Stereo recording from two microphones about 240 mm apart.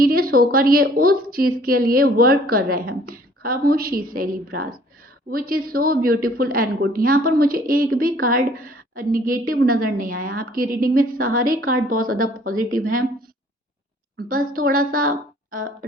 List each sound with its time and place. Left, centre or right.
0.0 s a woman's voice: right
14.2 s a woman's voice: right